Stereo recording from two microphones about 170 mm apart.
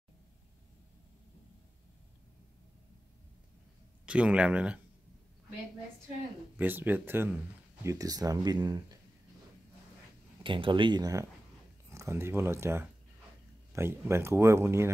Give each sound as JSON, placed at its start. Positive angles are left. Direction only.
{"t": 4.0, "sound": "a man's voice", "side_deg": -5}
{"t": 6.5, "sound": "speech", "side_deg": -10}
{"t": 10.4, "sound": "speech", "side_deg": -30}